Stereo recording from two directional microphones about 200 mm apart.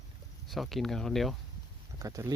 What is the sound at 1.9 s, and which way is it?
Speech, 15° right (ahead or behind).